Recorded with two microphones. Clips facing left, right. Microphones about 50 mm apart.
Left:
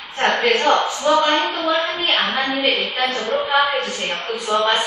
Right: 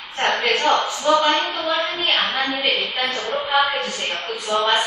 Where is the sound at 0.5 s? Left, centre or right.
Centre.